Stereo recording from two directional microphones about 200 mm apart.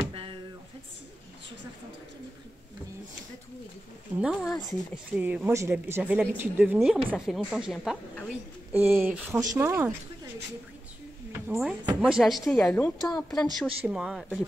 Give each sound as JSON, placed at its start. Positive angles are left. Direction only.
{"t": 0.0, "sound": "a sound", "side_deg": -25}
{"t": 4.2, "sound": "a woman's voice", "side_deg": -5}
{"t": 11.4, "sound": "a woman's voice", "side_deg": -5}